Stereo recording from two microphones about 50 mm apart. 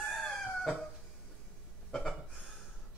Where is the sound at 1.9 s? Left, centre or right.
Centre.